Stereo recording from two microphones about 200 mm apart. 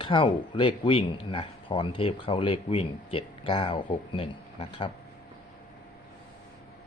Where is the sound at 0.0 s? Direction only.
25° left (ahead or behind).